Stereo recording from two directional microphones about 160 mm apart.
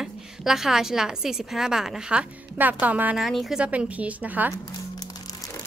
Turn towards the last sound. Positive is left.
turn(degrees=-10)  # may be behind; listen again after turning